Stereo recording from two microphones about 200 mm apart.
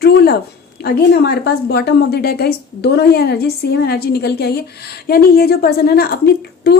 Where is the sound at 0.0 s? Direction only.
50° left (ahead or behind).